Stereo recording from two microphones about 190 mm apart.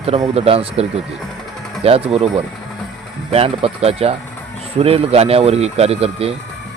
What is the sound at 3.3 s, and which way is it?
Speech, 30° right (ahead or behind).